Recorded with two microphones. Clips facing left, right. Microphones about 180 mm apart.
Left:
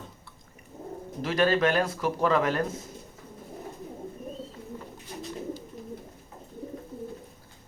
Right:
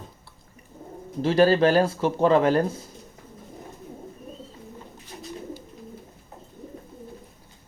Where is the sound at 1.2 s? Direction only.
30° right (ahead or behind).